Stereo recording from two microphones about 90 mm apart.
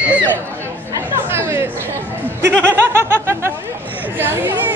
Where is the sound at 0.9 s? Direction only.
30° right (ahead or behind).